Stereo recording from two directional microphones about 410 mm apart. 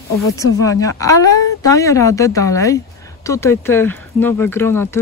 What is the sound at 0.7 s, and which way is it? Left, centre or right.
Speech, centre.